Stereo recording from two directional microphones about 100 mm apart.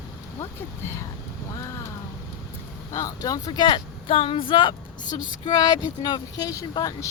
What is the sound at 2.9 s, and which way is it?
Speech, 35° left (ahead or behind).